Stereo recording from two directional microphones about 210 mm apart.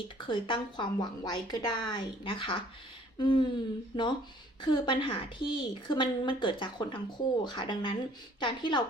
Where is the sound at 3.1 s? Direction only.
20° left (ahead or behind).